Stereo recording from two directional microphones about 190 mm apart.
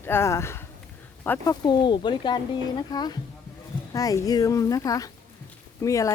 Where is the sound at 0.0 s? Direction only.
10° left (ahead or behind).